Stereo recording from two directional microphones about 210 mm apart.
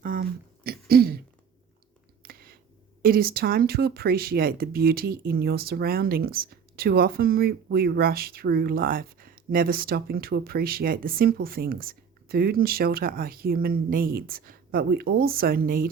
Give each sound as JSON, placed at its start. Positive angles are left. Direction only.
{"t": 0.0, "sound": "throat clearing", "side_deg": -45}
{"t": 2.2, "sound": "a sound", "side_deg": -45}
{"t": 3.0, "sound": "speech", "side_deg": -45}